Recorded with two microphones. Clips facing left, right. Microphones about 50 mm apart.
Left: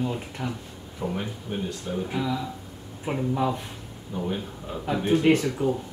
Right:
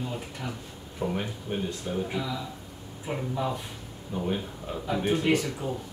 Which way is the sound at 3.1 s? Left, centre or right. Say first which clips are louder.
Left 4 dB; left.